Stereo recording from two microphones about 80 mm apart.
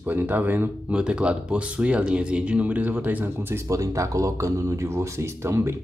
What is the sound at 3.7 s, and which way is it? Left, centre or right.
Speech, right.